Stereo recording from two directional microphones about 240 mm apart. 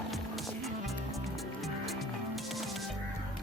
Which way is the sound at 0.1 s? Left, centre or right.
Centre.